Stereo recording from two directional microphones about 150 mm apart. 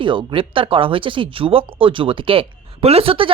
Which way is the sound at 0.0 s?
35° right (ahead or behind).